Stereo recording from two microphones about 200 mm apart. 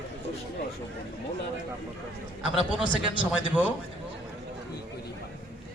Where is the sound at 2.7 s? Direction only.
5° right (ahead or behind).